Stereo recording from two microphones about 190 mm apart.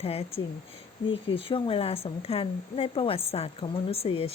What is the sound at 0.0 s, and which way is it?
Speech, 30° left (ahead or behind).